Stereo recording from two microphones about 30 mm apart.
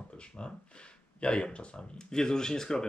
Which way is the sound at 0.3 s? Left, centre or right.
Left.